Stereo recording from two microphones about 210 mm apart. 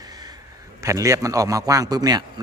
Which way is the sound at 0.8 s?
15° right (ahead or behind).